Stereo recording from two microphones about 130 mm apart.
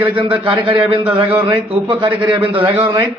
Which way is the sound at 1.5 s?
40° right (ahead or behind).